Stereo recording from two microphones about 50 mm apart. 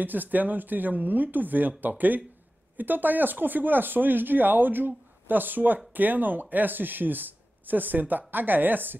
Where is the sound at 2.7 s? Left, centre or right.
Right.